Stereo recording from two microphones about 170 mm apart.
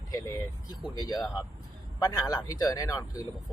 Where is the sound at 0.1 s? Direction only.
20° left (ahead or behind).